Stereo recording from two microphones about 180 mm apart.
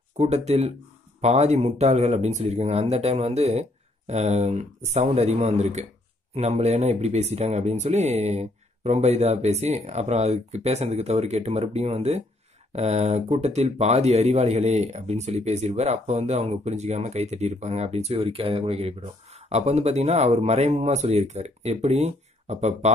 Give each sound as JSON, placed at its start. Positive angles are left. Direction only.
{"t": 0.2, "sound": "speech", "side_deg": -35}